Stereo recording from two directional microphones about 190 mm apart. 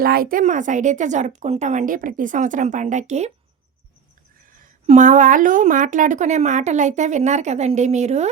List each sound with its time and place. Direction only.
0.0 s a woman's voice: 50° right (ahead or behind)
4.5 s a woman's voice: 40° right (ahead or behind)